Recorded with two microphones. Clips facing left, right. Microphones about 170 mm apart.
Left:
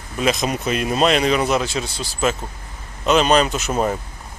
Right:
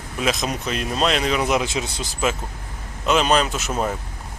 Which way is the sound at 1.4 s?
15° right (ahead or behind).